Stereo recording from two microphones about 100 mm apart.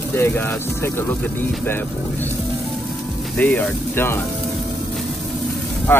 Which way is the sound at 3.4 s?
15° left (ahead or behind).